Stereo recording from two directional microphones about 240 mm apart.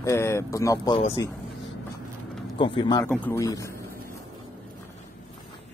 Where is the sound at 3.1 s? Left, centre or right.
Centre.